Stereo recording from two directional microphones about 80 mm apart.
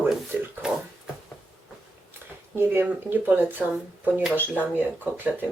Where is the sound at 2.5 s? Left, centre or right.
Right.